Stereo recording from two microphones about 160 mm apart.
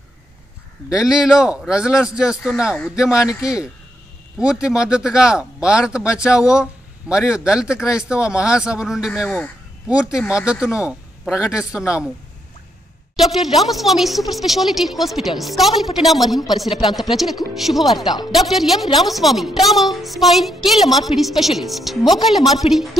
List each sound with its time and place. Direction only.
0.8 s speech: 5° right (ahead or behind)
3.1 s speech: 20° left (ahead or behind)
4.4 s speech: 5° right (ahead or behind)
13.1 s speech: centre (ahead or behind)